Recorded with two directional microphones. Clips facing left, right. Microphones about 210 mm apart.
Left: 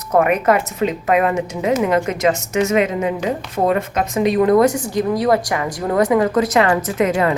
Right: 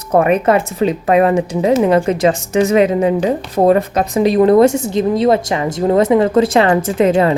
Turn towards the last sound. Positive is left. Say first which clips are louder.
# right 5 dB
turn(degrees=-30)  # may be behind; listen again after turning